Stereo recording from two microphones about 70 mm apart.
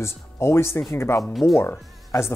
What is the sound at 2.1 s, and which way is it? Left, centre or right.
Music, left.